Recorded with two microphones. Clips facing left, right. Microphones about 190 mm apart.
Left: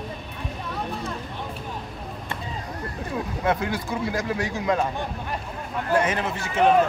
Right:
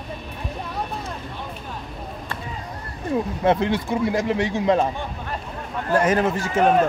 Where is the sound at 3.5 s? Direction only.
25° right (ahead or behind).